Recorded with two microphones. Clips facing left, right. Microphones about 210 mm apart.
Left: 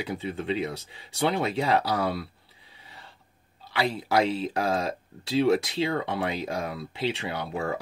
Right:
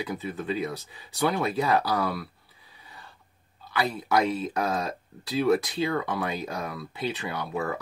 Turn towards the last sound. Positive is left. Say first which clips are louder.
# even
turn(degrees=30)  # may be behind; listen again after turning